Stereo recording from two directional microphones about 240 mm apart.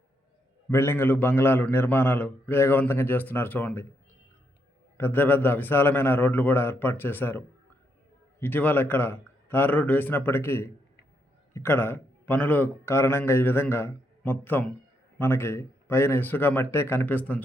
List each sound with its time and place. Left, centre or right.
0.7 s a man's voice: centre
4.9 s a man's voice: centre